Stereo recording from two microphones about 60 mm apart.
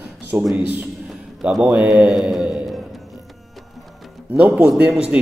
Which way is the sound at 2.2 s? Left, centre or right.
Centre.